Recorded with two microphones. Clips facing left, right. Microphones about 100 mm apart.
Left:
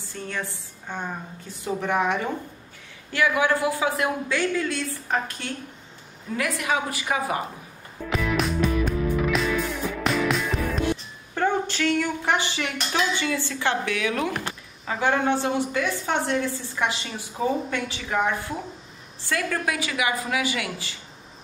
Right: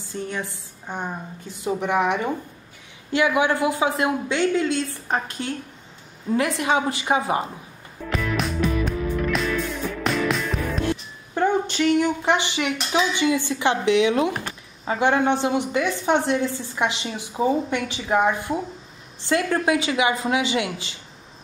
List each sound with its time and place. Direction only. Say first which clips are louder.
0.0 s a woman's voice: right 3 dB; 20° right (ahead or behind)
8.1 s music: left 1 dB; centre (ahead or behind)
11.3 s a woman's voice: right 3 dB; 20° right (ahead or behind)